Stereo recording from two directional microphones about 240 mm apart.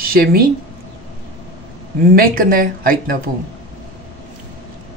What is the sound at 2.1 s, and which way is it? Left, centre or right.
Speech, right.